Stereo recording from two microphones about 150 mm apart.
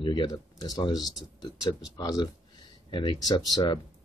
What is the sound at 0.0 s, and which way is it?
Speech, 30° left (ahead or behind).